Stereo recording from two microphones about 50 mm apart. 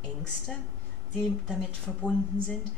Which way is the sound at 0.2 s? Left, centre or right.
Centre.